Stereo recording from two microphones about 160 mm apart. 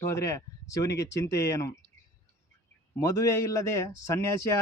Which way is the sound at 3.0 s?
20° left (ahead or behind).